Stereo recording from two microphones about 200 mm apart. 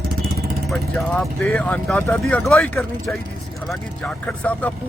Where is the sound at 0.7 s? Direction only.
Centre (ahead or behind).